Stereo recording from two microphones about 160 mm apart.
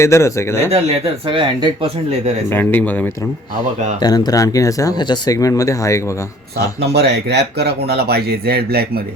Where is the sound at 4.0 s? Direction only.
25° left (ahead or behind).